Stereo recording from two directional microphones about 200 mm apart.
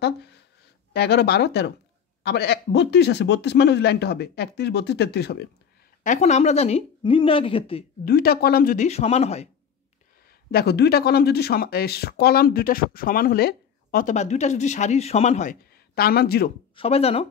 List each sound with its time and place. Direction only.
0.0 s a sound: 55° left (ahead or behind)
0.9 s speech: 55° left (ahead or behind)
6.0 s speech: 35° left (ahead or behind)
8.0 s speech: 50° left (ahead or behind)
8.8 s speech: 30° left (ahead or behind)
10.5 s speech: 55° left (ahead or behind); by 15.5 s 35° left (ahead or behind)
15.7 s speech: 50° left (ahead or behind)
16.7 s speech: 30° left (ahead or behind)